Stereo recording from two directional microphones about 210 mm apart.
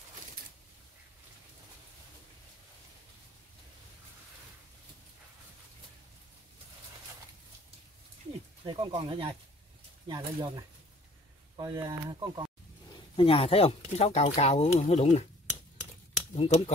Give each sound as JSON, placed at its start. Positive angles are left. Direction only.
{"t": 8.3, "sound": "speech", "side_deg": -25}
{"t": 13.1, "sound": "speech", "side_deg": 25}
{"t": 16.3, "sound": "speech", "side_deg": 30}